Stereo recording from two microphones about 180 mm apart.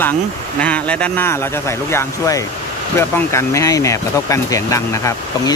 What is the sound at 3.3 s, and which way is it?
Speech, 15° left (ahead or behind).